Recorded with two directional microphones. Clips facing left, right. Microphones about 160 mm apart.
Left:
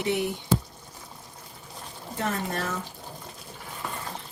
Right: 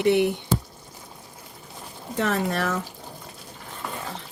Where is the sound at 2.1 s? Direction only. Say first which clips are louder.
Right 5 dB; 85° right.